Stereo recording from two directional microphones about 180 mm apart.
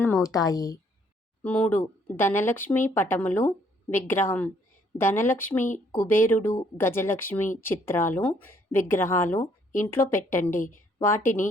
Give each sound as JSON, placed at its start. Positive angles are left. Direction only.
{"t": 0.0, "sound": "speech", "side_deg": 15}
{"t": 1.5, "sound": "a woman's voice", "side_deg": 10}